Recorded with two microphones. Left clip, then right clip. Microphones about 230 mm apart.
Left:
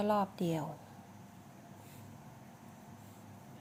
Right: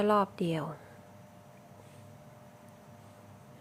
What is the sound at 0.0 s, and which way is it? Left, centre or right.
Speech, centre.